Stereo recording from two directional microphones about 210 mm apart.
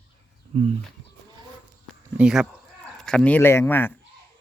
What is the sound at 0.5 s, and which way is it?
Speech, 30° right (ahead or behind).